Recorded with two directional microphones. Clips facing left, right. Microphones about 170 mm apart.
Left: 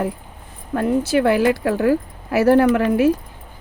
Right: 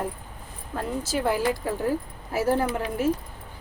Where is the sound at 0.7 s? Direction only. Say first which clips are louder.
Left 11 dB; 65° left (ahead or behind).